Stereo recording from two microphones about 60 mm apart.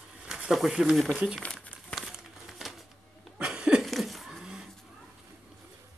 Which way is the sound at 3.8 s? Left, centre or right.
Centre.